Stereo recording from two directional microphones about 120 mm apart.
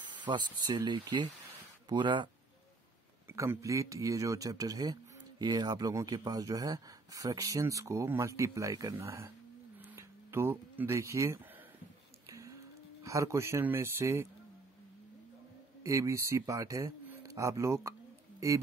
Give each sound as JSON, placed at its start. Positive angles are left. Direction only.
{"t": 0.0, "sound": "speech", "side_deg": -40}
{"t": 3.3, "sound": "speech", "side_deg": -20}
{"t": 12.3, "sound": "a sound", "side_deg": -25}
{"t": 13.0, "sound": "speech", "side_deg": -25}
{"t": 15.8, "sound": "speech", "side_deg": -25}